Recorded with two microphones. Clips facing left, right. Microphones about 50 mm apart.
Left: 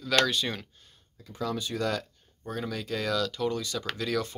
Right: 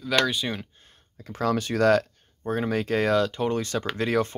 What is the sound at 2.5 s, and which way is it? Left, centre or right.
Speech, right.